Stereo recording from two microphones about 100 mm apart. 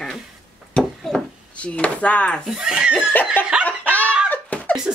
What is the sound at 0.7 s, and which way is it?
Chop, 5° left (ahead or behind).